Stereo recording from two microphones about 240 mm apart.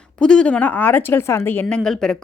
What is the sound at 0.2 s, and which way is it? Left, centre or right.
Speech, centre.